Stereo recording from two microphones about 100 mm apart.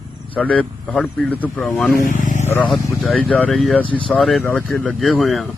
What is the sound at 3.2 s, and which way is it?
Speech, 15° left (ahead or behind).